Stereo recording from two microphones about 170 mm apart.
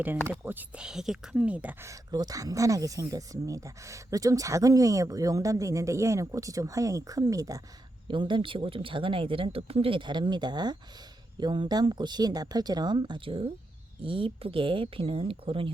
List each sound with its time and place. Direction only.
0.4 s speech: 10° right (ahead or behind); by 15.7 s 30° right (ahead or behind)